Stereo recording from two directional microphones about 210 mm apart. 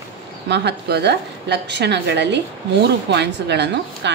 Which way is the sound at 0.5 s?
55° right (ahead or behind).